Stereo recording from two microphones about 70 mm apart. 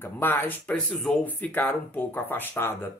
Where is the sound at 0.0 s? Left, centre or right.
Left.